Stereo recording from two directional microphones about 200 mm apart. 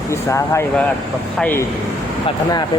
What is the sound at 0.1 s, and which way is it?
Speech, 15° left (ahead or behind).